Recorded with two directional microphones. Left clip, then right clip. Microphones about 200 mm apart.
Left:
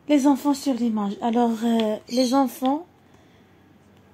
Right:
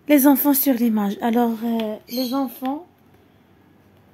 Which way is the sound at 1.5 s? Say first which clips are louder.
Left 2 dB; 10° left (ahead or behind).